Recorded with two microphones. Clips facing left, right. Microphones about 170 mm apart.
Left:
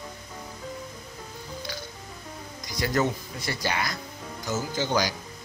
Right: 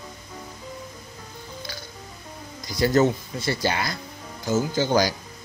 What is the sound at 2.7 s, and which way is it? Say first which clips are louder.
Speech: right 6 dB; 30° right (ahead or behind).